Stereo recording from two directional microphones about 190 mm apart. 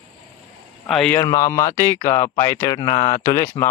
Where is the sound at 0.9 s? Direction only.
5° left (ahead or behind).